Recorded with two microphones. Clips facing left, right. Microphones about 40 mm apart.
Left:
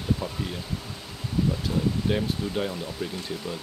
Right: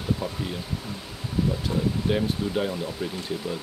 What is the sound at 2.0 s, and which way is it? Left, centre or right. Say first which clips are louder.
Speech: right 2 dB; centre.